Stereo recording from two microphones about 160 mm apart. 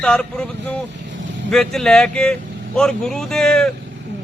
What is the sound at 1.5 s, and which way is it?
A man's voice, centre (ahead or behind).